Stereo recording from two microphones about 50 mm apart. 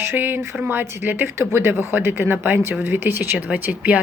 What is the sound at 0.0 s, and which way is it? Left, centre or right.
Speech, right.